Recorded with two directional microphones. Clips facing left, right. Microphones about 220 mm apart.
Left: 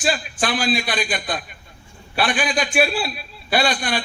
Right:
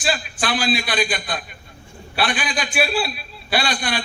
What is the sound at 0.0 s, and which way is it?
A man's voice, 45° left (ahead or behind).